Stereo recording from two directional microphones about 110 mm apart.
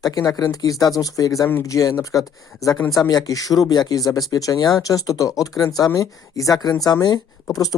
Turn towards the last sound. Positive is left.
turn(degrees=35)  # may be behind; listen again after turning